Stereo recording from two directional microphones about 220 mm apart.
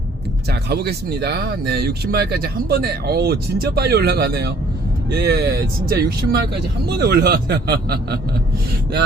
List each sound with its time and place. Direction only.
0.7 s speech: 45° right (ahead or behind)